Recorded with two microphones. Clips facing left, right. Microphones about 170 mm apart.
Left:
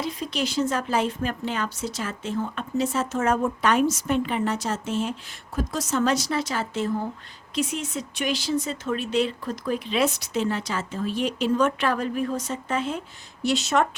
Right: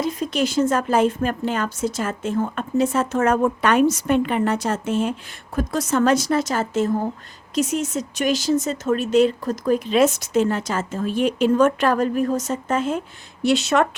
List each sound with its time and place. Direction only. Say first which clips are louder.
0.0 s speech: right 6 dB; 45° right (ahead or behind)
13.4 s speech: right 4 dB; 65° right (ahead or behind)